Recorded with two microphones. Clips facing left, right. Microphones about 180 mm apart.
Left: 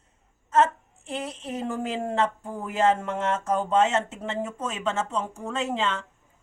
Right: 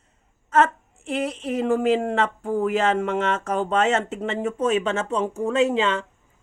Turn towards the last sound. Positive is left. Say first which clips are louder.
# right 7 dB
turn(degrees=-75)  # may be behind; listen again after turning